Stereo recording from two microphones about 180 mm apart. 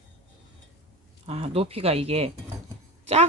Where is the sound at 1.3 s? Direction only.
35° right (ahead or behind).